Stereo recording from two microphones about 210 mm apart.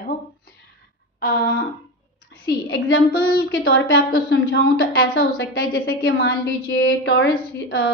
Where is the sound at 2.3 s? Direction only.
50° left (ahead or behind).